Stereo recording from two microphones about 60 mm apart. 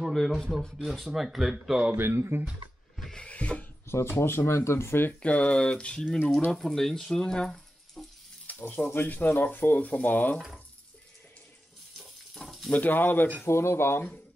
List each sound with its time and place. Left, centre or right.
0.0 s speech: centre
2.0 s speech: right
3.0 s rub: centre
3.3 s a sound: left
3.8 s speech: left
5.2 s speech: left
6.5 s speech: centre
8.5 s speech: left
12.0 s water: centre
12.7 s speech: left
13.5 s speech: left